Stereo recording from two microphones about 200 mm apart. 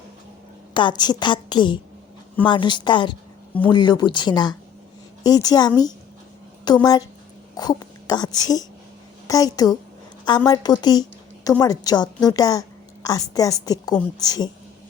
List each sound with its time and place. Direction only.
0.7 s a woman's voice: 25° left (ahead or behind)